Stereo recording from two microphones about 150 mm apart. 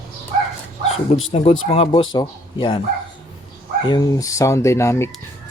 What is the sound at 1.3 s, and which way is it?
Speech, 40° left (ahead or behind).